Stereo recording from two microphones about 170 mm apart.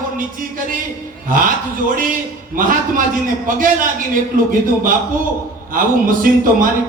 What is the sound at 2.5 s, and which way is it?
A man's voice, 55° right (ahead or behind).